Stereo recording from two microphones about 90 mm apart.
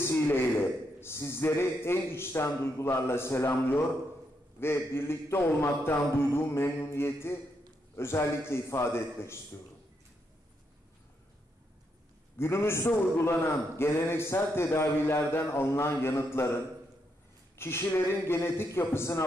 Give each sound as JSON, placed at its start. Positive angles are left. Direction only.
{"t": 0.0, "sound": "a man's voice", "side_deg": 25}
{"t": 12.4, "sound": "a man's voice", "side_deg": 30}
{"t": 17.6, "sound": "a man's voice", "side_deg": 30}